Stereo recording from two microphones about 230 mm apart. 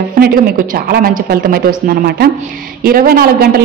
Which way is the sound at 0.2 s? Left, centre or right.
Right.